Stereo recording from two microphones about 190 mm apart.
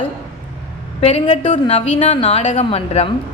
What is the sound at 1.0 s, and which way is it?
A woman's voice, 30° left (ahead or behind).